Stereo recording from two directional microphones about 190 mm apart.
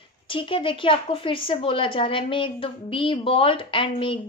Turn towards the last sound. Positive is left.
turn(degrees=25)  # may be behind; listen again after turning